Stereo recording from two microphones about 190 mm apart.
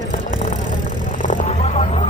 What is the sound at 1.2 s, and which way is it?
Music, 40° left (ahead or behind).